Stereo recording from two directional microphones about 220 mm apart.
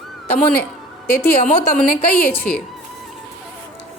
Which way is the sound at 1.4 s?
35° left (ahead or behind).